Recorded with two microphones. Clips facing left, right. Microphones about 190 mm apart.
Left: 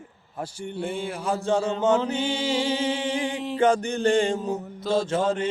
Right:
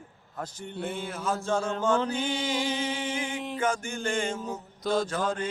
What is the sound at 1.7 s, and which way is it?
Mantra, 20° left (ahead or behind).